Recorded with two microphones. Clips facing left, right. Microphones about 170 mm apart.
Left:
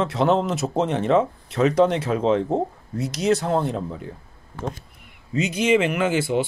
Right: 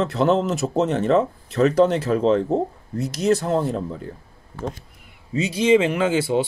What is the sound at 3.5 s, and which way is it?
Speech, 40° right (ahead or behind).